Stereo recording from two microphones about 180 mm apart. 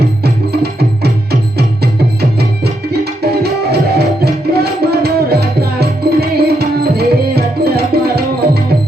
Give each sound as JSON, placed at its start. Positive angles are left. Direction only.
{"t": 0.6, "sound": "music", "side_deg": -60}
{"t": 2.9, "sound": "music", "side_deg": -60}